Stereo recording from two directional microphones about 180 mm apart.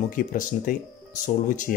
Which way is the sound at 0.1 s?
50° left (ahead or behind).